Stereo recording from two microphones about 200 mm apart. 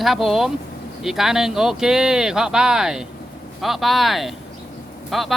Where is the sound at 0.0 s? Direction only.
Centre (ahead or behind).